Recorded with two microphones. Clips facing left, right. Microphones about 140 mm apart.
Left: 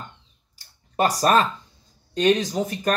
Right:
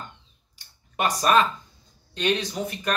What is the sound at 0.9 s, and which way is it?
Speech, 40° left (ahead or behind).